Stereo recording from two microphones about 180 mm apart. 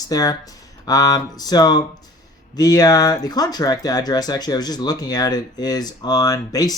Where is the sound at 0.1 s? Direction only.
20° left (ahead or behind).